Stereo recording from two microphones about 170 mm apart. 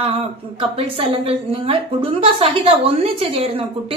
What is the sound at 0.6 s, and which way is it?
Speech, 35° right (ahead or behind).